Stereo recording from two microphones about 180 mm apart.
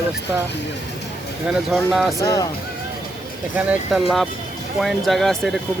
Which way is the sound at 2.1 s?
20° left (ahead or behind).